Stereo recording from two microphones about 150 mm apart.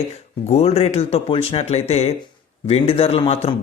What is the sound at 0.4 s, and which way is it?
Speech, 45° left (ahead or behind).